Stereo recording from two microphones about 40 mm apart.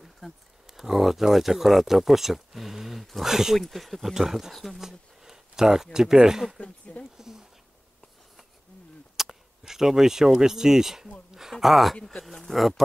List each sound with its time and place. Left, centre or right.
0.2 s speech: centre
0.7 s speech: centre
3.5 s speech: centre
4.5 s speech: centre
4.8 s a sound: centre
6.2 s speech: centre
6.6 s speech: left
7.2 s speech: centre
9.1 s a sound: centre
10.4 s speech: centre
12.0 s speech: left
12.3 s speech: centre